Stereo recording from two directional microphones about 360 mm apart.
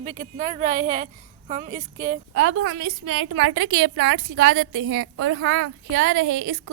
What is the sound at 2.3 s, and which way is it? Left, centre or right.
A woman's voice, right.